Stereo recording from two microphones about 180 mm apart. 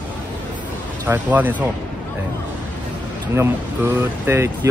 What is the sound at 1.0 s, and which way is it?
Speech, 10° right (ahead or behind).